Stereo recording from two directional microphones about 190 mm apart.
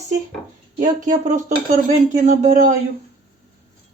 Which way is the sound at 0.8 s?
45° right (ahead or behind).